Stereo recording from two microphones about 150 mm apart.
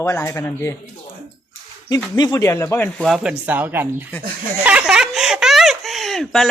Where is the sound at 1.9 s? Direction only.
25° left (ahead or behind).